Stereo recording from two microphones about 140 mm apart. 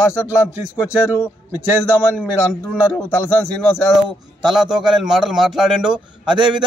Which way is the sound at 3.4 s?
Centre (ahead or behind).